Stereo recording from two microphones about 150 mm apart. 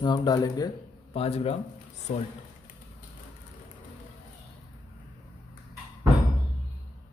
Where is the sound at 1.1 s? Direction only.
40° left (ahead or behind).